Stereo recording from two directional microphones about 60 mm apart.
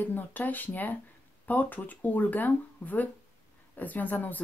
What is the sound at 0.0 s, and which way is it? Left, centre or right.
Speech, left.